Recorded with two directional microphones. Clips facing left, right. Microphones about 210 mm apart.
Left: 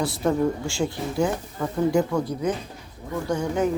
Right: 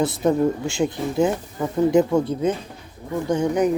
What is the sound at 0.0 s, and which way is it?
Speech, 20° right (ahead or behind).